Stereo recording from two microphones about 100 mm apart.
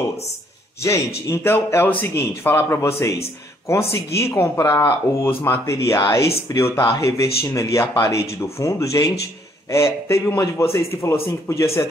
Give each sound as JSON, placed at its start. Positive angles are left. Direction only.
{"t": 0.8, "sound": "speech", "side_deg": 30}